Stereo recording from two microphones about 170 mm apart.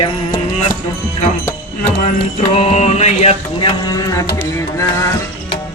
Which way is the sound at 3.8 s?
20° left (ahead or behind).